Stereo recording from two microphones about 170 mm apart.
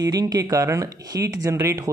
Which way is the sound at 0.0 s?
20° right (ahead or behind).